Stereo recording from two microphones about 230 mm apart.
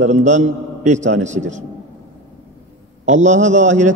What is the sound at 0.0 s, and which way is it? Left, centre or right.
A man's voice, right.